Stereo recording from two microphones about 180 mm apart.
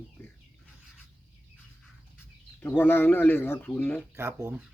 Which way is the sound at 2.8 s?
10° left (ahead or behind).